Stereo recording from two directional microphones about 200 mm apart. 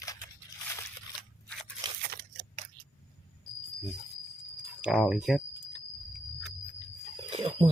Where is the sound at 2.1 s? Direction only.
55° right (ahead or behind).